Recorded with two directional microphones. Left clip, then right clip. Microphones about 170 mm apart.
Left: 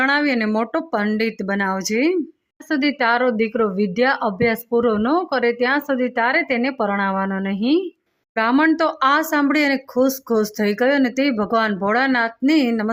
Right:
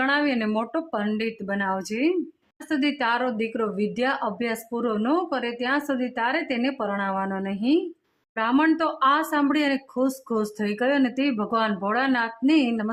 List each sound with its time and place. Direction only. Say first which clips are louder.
0.0 s speech: left 5 dB; 25° left (ahead or behind)